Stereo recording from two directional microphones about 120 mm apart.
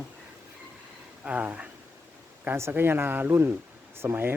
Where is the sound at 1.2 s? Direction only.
10° right (ahead or behind).